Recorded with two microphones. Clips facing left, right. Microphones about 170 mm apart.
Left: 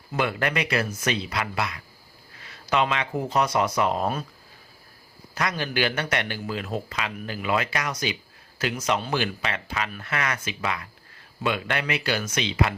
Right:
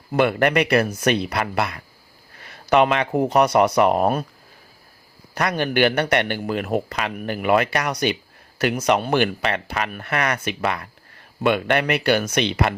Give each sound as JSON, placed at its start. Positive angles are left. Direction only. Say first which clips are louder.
{"t": 0.1, "sound": "speech", "louder": "right 8 dB", "side_deg": -60}
{"t": 5.3, "sound": "speech", "louder": "right 6 dB", "side_deg": -60}